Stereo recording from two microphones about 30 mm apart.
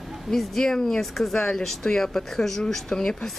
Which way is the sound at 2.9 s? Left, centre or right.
Left.